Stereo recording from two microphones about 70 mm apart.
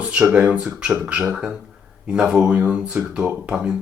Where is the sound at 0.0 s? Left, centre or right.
Centre.